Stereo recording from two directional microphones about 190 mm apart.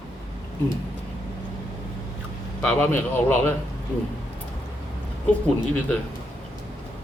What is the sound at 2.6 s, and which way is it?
Speech, 5° left (ahead or behind).